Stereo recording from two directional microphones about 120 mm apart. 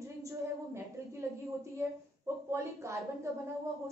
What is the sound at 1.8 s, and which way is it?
A woman's voice, 25° right (ahead or behind).